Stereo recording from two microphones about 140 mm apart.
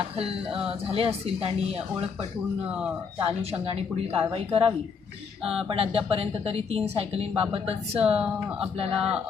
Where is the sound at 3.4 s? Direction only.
45° right (ahead or behind).